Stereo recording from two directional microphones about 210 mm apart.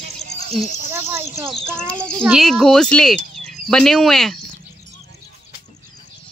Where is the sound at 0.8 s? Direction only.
10° right (ahead or behind).